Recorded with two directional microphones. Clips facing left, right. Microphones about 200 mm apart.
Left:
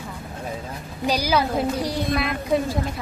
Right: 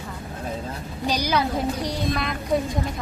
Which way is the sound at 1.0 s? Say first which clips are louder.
Left 2 dB; 5° left (ahead or behind).